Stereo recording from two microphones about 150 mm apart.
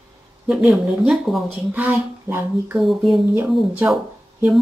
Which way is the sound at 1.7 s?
15° right (ahead or behind).